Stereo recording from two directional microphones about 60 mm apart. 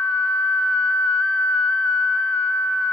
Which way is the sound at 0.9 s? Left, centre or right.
Left.